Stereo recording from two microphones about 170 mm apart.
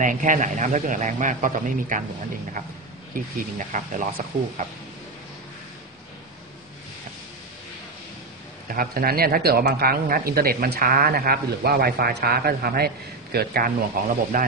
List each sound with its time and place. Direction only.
0.0 s a man's voice: 50° right (ahead or behind)
8.6 s speech: 60° right (ahead or behind)